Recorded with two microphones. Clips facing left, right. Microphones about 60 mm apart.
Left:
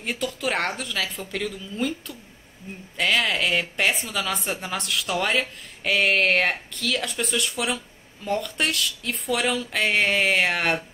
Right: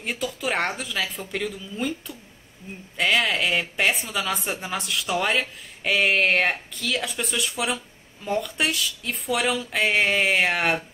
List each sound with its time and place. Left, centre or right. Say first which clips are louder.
0.0 s a woman's voice: left 1 dB; centre